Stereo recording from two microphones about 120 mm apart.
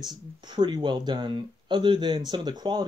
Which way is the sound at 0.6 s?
35° right (ahead or behind).